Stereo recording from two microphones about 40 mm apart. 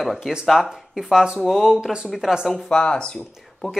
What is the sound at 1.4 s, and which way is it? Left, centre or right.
Speech, centre.